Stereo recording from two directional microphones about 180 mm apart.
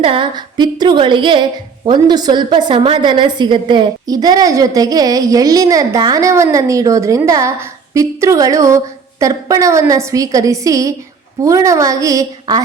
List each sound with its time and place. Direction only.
0.0 s a woman's voice: 30° right (ahead or behind)